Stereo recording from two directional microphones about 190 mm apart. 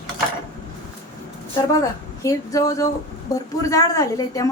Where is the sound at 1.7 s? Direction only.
15° left (ahead or behind).